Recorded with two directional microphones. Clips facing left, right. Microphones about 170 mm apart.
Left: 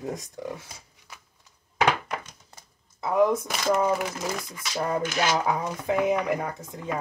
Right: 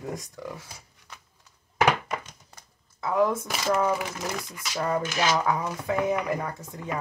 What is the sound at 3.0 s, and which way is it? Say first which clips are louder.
Speech: left 2 dB; 20° left (ahead or behind).